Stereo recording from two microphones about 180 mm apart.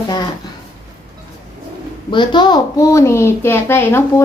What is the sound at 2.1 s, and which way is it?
Speech, 25° left (ahead or behind).